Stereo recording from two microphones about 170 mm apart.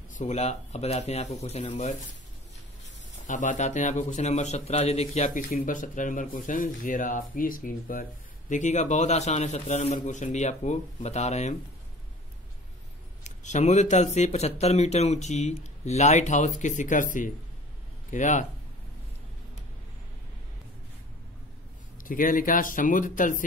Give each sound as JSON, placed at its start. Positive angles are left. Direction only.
{"t": 0.2, "sound": "speech", "side_deg": 40}
{"t": 3.3, "sound": "a man's voice", "side_deg": 45}
{"t": 13.2, "sound": "a man's voice", "side_deg": 45}
{"t": 22.0, "sound": "a man's voice", "side_deg": 50}